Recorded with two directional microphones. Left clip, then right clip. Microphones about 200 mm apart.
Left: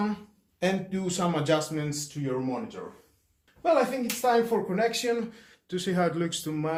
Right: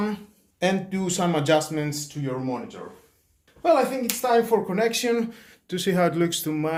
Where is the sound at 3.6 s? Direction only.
45° right (ahead or behind).